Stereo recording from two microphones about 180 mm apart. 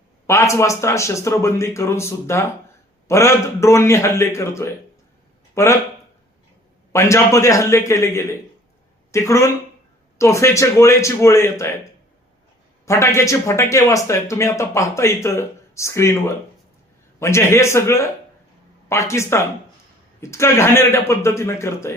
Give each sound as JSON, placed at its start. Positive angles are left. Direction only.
{"t": 0.3, "sound": "speech", "side_deg": 15}
{"t": 6.9, "sound": "speech", "side_deg": 15}
{"t": 12.8, "sound": "speech", "side_deg": 15}